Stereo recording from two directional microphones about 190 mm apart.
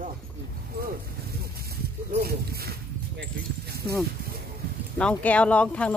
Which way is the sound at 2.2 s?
55° right (ahead or behind).